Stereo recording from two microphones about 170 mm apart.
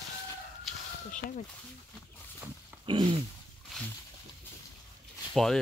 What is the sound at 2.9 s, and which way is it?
Speech, 30° right (ahead or behind).